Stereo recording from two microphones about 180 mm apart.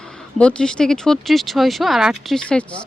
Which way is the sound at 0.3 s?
5° left (ahead or behind).